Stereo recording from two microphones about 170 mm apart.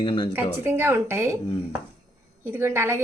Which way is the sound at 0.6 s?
15° right (ahead or behind).